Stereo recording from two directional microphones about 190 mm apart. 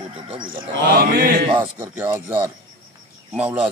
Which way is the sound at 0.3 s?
25° right (ahead or behind).